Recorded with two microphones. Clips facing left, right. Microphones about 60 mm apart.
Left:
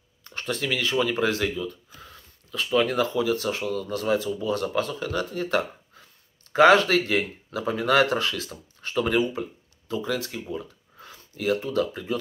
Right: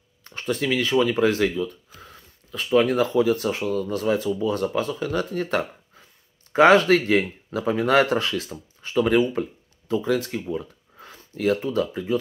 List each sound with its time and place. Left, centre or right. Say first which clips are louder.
0.2 s speech: right 4 dB; right
8.5 s speech: right 1 dB; centre
9.8 s speech: right 5 dB; right
11.0 s a sound: right 5 dB; right
11.6 s speech: right 2 dB; right